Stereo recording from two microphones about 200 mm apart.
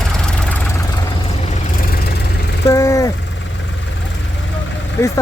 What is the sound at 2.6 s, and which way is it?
Vehicle, 15° left (ahead or behind).